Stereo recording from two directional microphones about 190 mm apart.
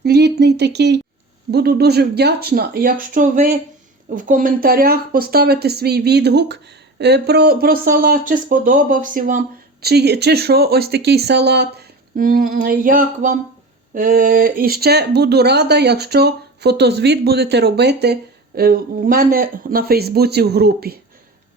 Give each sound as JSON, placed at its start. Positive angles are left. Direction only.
{"t": 0.0, "sound": "speech", "side_deg": -60}
{"t": 9.8, "sound": "speech", "side_deg": -60}